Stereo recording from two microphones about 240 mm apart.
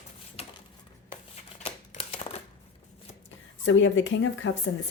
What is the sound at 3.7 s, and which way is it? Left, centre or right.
Speech, left.